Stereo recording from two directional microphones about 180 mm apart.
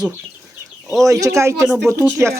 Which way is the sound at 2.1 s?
15° right (ahead or behind).